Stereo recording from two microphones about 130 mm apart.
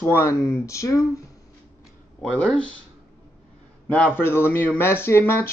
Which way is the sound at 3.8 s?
10° left (ahead or behind).